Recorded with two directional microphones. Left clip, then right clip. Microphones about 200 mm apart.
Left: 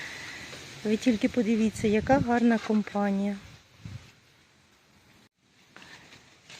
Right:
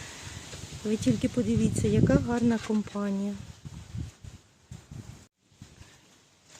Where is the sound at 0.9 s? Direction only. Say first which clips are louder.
Left 2 dB; centre (ahead or behind).